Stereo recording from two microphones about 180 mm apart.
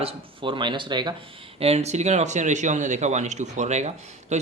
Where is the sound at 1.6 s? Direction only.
35° right (ahead or behind).